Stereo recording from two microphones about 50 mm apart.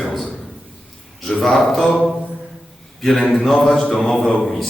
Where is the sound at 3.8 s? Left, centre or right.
Centre.